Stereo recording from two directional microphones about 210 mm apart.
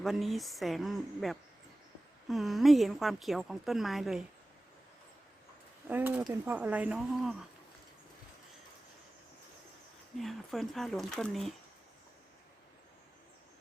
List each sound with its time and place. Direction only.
0.0 s a woman's voice: centre (ahead or behind)
5.9 s speech: 10° right (ahead or behind)
10.2 s a woman's voice: centre (ahead or behind)